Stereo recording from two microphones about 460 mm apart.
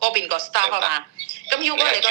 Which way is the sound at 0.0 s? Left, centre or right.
Right.